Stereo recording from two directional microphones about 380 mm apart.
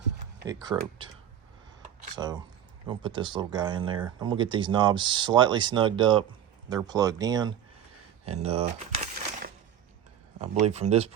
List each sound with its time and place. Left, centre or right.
0.4 s speech: centre
2.1 s speech: centre
8.3 s a sound: centre
10.4 s speech: centre